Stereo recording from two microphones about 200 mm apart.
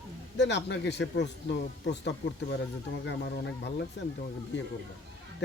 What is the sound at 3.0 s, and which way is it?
Speech, 60° left (ahead or behind).